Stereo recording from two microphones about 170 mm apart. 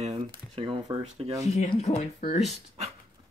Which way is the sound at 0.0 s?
35° right (ahead or behind).